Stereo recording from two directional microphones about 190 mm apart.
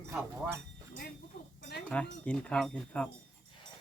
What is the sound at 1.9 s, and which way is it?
Speech, 5° left (ahead or behind).